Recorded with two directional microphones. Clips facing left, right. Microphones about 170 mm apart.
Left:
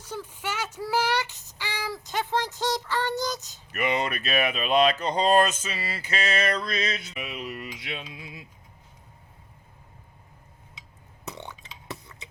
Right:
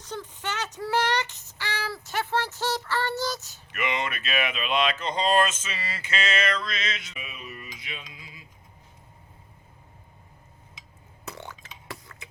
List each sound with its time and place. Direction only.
0.0 s child singing: 10° left (ahead or behind)
3.7 s speech: 40° left (ahead or behind)
7.2 s a sound: 75° left (ahead or behind)
11.3 s beatboxing: 20° left (ahead or behind)